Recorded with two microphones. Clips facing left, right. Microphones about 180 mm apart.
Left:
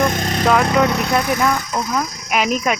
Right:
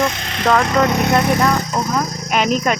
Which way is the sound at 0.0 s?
50° left (ahead or behind).